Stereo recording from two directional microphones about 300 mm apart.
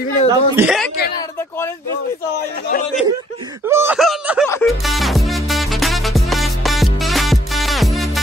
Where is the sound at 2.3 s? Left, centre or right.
Left.